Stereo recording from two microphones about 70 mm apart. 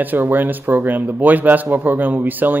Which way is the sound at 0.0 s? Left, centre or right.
Right.